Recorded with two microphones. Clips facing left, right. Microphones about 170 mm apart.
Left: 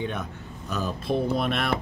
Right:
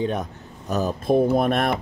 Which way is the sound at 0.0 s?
40° right (ahead or behind).